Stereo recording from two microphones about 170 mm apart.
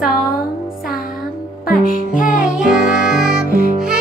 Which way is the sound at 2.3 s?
5° right (ahead or behind).